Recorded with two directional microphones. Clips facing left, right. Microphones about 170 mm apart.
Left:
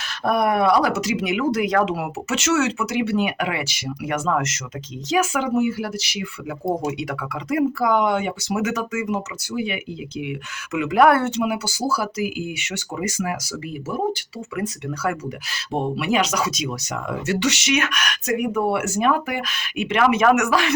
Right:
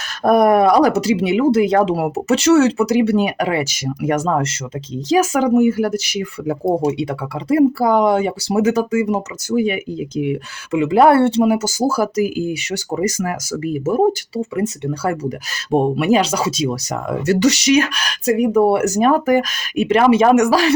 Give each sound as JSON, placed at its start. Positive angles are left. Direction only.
{"t": 0.3, "sound": "speech", "side_deg": -45}
{"t": 6.7, "sound": "speech", "side_deg": -30}
{"t": 14.3, "sound": "speech", "side_deg": -25}
{"t": 15.7, "sound": "speech", "side_deg": -45}